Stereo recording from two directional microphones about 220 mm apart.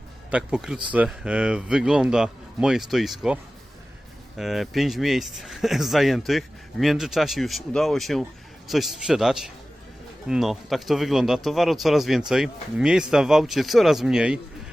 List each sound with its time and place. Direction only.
0.3 s speech: 5° right (ahead or behind)
4.4 s speech: centre (ahead or behind)